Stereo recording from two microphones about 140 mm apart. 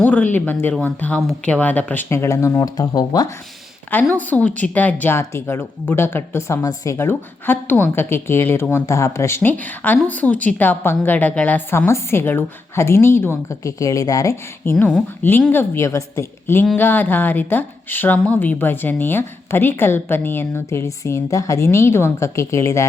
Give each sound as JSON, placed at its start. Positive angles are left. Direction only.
{"t": 0.0, "sound": "speech", "side_deg": 10}
{"t": 3.9, "sound": "speech", "side_deg": 10}
{"t": 14.6, "sound": "speech", "side_deg": 15}